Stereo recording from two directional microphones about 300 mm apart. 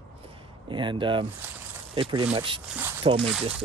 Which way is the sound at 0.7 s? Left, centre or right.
Centre.